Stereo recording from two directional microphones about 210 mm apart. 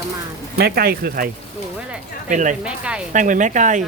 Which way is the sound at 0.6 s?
45° right (ahead or behind).